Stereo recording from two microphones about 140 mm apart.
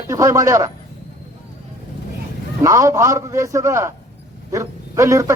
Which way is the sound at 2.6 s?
20° right (ahead or behind).